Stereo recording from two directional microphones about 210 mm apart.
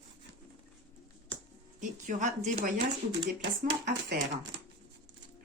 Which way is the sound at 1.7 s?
35° right (ahead or behind).